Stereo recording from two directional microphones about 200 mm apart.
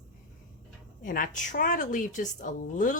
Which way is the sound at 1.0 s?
45° left (ahead or behind).